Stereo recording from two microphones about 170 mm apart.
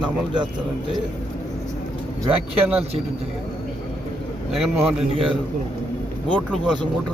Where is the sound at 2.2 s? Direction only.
10° right (ahead or behind).